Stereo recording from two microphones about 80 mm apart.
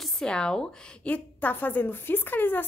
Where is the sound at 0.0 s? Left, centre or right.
Centre.